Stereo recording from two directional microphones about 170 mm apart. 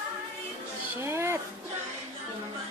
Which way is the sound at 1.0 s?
15° right (ahead or behind).